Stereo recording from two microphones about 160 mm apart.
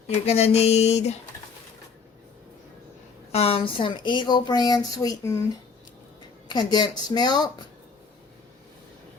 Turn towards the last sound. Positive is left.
turn(degrees=25)  # may be behind; listen again after turning